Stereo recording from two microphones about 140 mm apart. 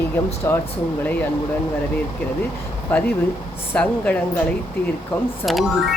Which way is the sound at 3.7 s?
10° left (ahead or behind).